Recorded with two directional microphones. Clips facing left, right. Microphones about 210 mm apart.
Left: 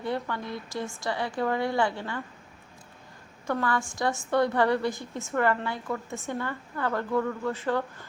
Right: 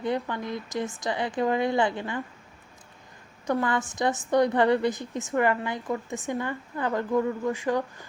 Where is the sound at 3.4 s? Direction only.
15° right (ahead or behind).